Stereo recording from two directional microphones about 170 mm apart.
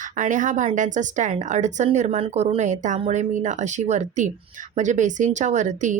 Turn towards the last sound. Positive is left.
turn(degrees=-45)  # may be behind; listen again after turning